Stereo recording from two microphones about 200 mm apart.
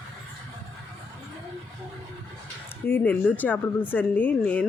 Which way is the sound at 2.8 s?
10° left (ahead or behind).